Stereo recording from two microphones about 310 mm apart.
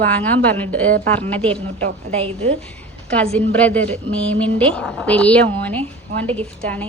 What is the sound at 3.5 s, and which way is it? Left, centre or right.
Speech, centre.